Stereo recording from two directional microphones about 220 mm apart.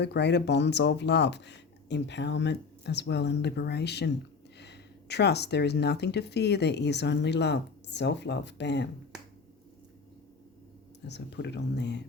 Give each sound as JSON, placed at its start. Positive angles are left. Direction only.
{"t": 0.0, "sound": "speech", "side_deg": 50}
{"t": 11.0, "sound": "speech", "side_deg": 50}